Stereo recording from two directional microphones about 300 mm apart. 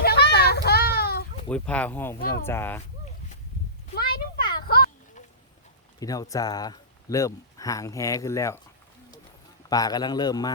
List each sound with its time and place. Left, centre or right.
0.0 s children playing: left
1.5 s speech: centre
3.9 s a sound: left
6.0 s speech: centre
9.6 s speech: centre